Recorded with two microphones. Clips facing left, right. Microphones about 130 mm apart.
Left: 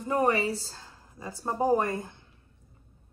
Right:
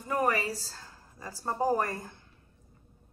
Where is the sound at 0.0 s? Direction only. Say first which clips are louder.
Left 3 dB; 25° left (ahead or behind).